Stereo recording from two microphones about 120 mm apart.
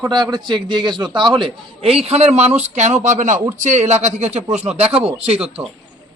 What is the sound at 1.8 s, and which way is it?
A man's voice, 55° right (ahead or behind).